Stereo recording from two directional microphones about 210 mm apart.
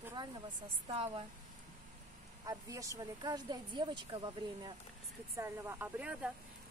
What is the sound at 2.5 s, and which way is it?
Speech, 15° right (ahead or behind).